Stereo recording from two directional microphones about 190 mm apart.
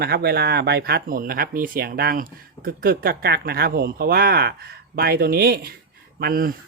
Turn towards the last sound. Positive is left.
turn(degrees=-50)  # may be behind; listen again after turning